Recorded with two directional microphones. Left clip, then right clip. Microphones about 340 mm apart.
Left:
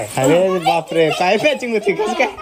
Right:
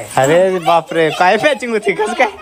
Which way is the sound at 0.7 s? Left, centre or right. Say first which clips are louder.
Right 3 dB; centre.